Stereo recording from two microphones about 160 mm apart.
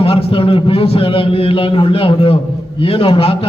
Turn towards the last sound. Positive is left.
turn(degrees=35)  # may be behind; listen again after turning